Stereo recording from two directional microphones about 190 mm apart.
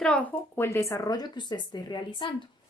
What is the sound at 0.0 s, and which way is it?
Speech, 5° left (ahead or behind).